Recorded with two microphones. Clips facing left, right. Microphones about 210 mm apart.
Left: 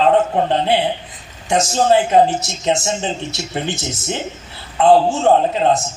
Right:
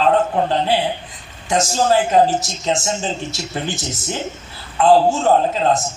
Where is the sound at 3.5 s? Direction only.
20° left (ahead or behind).